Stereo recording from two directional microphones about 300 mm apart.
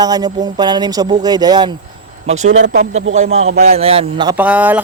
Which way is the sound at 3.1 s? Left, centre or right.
Right.